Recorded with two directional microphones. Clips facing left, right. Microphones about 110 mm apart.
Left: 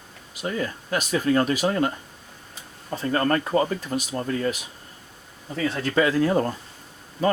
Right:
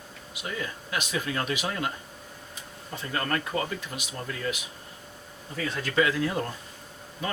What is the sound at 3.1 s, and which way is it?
Speech, 40° left (ahead or behind).